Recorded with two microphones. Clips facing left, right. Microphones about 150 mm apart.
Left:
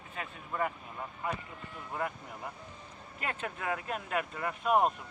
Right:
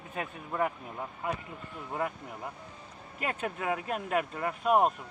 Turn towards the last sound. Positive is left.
turn(degrees=0)  # may be behind; listen again after turning